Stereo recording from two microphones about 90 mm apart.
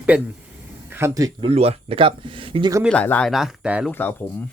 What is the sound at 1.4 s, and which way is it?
Speech, 90° right.